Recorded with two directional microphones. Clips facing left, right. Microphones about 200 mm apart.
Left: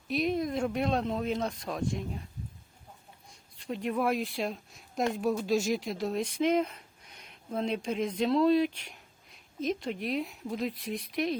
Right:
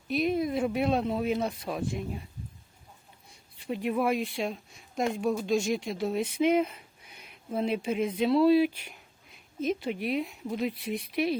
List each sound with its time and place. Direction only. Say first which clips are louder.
0.1 s speech: right 2 dB; centre (ahead or behind)
3.6 s speech: right 2 dB; 5° right (ahead or behind)